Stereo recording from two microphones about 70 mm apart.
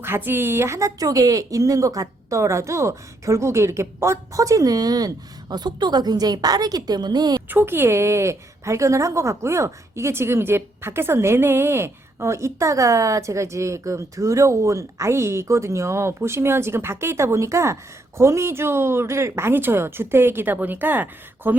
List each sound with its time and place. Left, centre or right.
0.0 s a woman's voice: right
7.5 s a woman's voice: right